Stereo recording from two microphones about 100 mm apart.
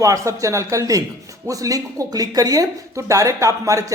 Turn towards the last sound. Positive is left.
turn(degrees=-35)  # may be behind; listen again after turning